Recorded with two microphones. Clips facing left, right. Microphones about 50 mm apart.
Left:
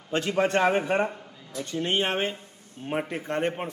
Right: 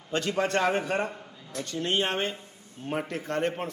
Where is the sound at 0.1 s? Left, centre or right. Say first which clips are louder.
Left 3 dB; centre.